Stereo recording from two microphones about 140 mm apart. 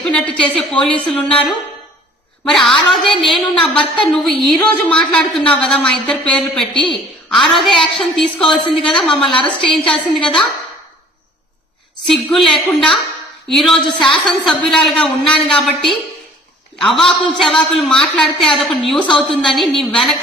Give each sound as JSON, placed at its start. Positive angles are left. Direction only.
{"t": 0.0, "sound": "a woman's voice", "side_deg": 10}
{"t": 12.0, "sound": "a woman's voice", "side_deg": 0}